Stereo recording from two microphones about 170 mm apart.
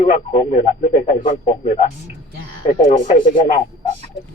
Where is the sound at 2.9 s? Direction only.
45° left (ahead or behind).